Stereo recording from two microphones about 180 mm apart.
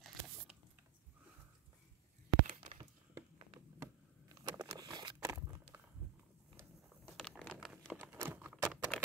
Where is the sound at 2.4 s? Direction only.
40° right (ahead or behind).